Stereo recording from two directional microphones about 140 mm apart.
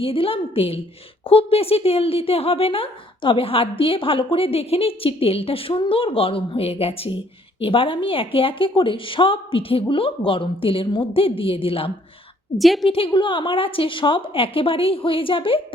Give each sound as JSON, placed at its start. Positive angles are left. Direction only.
{"t": 0.0, "sound": "speech", "side_deg": 40}
{"t": 12.5, "sound": "a woman's voice", "side_deg": 0}
{"t": 12.9, "sound": "speech", "side_deg": 40}